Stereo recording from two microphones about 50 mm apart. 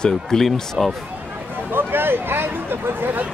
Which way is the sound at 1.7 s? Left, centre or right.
Right.